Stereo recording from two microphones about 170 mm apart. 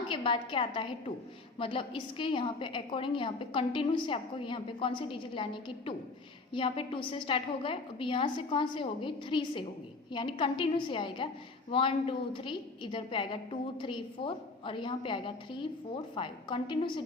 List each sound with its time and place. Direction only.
0.1 s a woman's voice: 30° left (ahead or behind)